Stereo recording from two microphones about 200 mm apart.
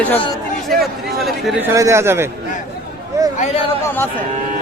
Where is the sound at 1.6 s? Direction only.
15° right (ahead or behind).